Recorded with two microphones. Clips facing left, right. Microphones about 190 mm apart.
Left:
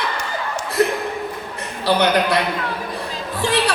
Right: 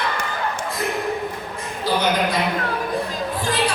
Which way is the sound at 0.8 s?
70° left (ahead or behind).